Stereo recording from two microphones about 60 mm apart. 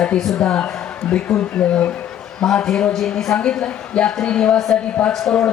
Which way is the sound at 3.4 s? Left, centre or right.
Centre.